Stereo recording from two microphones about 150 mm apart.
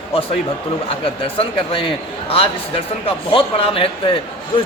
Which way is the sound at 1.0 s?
35° left (ahead or behind).